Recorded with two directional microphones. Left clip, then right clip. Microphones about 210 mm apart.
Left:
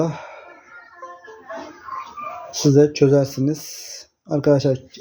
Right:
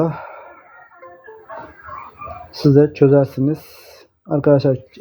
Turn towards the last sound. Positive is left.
turn(degrees=-20)  # may be behind; listen again after turning